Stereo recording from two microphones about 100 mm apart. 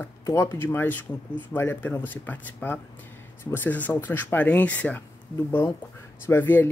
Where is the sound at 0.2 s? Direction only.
30° left (ahead or behind).